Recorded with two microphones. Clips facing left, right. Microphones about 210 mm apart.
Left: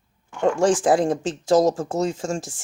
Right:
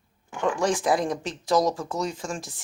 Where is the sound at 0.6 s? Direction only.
30° left (ahead or behind).